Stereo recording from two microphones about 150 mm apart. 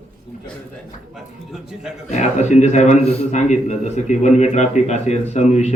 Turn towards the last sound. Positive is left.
turn(degrees=50)  # may be behind; listen again after turning